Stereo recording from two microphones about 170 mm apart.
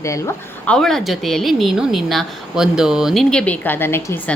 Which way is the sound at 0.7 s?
Centre (ahead or behind).